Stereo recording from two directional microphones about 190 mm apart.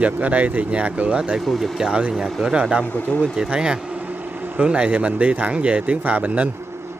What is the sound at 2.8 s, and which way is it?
Speech, 10° left (ahead or behind).